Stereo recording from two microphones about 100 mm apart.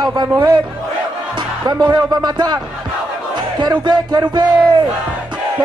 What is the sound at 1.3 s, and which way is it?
Music, 45° right (ahead or behind).